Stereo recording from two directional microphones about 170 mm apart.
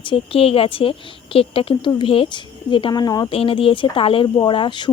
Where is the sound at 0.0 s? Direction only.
30° left (ahead or behind).